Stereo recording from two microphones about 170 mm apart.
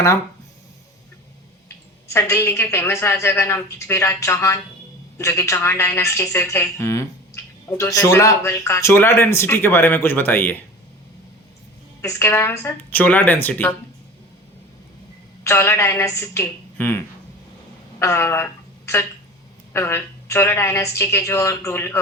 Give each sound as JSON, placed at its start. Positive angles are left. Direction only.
{"t": 2.0, "sound": "speech", "side_deg": 15}
{"t": 12.0, "sound": "speech", "side_deg": 15}
{"t": 15.4, "sound": "speech", "side_deg": 15}
{"t": 18.0, "sound": "a woman's voice", "side_deg": 15}